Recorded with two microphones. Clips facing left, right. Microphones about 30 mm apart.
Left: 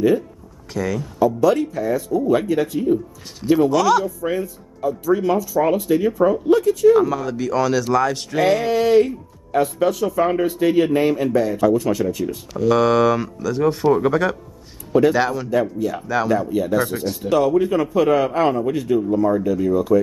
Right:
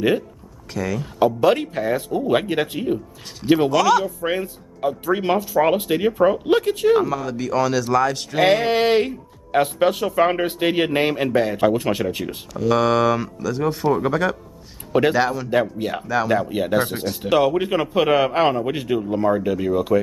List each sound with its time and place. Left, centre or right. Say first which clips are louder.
0.7 s speech: left 2 dB; centre
1.2 s a man's voice: left 1 dB; right
3.7 s speech: right 1 dB; centre
4.2 s a man's voice: even; right
6.5 s a man's voice: left 3 dB; right
7.1 s speech: left 2 dB; centre
8.4 s a man's voice: right 1 dB; right
12.5 s speech: left 2 dB; centre
14.9 s speech: left 2 dB; right
15.1 s speech: even; centre
15.8 s a man's voice: left 1 dB; right